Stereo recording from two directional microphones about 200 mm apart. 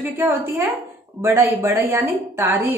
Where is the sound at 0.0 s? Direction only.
10° right (ahead or behind).